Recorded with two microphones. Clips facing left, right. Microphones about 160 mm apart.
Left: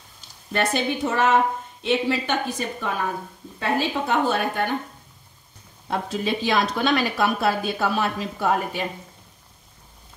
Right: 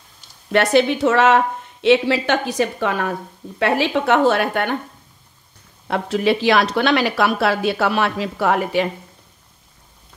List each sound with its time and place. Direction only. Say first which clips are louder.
0.5 s speech: right 8 dB; 80° right
5.9 s speech: right 7 dB; 70° right (ahead or behind)